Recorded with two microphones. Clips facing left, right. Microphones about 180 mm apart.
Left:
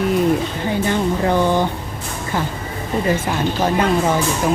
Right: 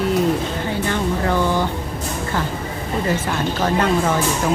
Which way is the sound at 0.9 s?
20° left (ahead or behind).